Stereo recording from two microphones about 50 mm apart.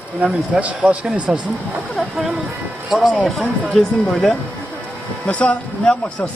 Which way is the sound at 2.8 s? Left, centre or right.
Centre.